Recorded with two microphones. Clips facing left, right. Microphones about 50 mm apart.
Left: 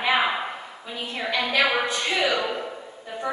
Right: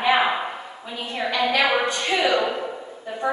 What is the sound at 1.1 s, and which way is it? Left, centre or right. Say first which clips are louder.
A woman's voice: right 4 dB; centre.